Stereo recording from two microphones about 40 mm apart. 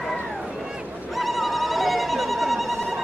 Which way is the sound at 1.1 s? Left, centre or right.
Centre.